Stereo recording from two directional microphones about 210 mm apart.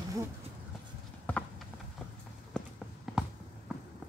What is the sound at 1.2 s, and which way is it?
Clip-clop, 5° left (ahead or behind).